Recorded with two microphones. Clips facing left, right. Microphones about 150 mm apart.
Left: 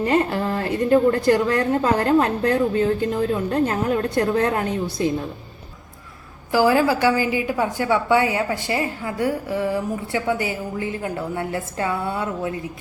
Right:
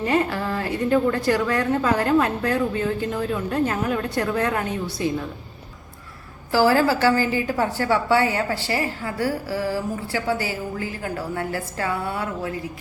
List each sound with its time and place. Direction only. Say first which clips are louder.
0.0 s a woman's voice: left 2 dB; 25° left (ahead or behind)
6.5 s a woman's voice: left 1 dB; 15° left (ahead or behind)